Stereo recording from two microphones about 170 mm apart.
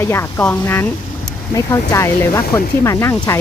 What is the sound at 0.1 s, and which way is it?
Speech, 15° left (ahead or behind).